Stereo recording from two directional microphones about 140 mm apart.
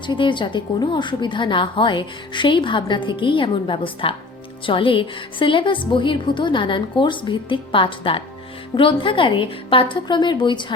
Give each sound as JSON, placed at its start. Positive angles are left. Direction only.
{"t": 0.1, "sound": "a woman's voice", "side_deg": 35}